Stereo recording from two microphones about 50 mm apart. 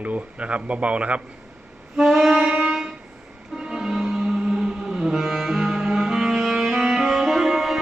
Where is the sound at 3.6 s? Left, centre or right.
Centre.